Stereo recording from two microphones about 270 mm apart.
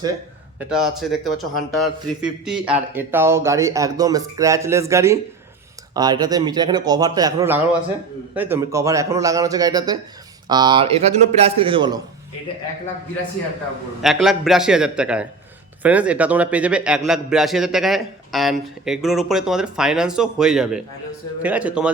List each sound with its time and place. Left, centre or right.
0.7 s a man's voice: centre
14.0 s a man's voice: centre